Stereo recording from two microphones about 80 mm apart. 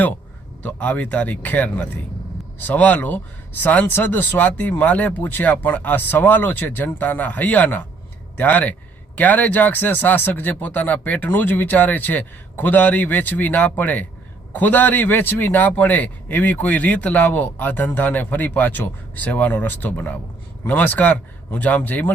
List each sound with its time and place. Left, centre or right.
0.6 s a man's voice: centre